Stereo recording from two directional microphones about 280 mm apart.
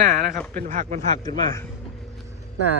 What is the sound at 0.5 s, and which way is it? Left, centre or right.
Speech, right.